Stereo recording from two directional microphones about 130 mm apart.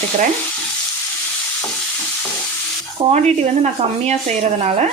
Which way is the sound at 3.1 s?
60° right (ahead or behind).